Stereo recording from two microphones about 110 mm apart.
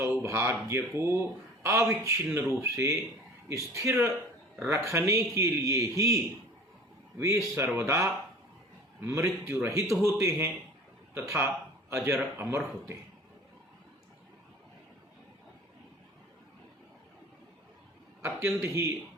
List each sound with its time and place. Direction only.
0.0 s a man's voice: 25° right (ahead or behind)
18.2 s speech: 25° right (ahead or behind)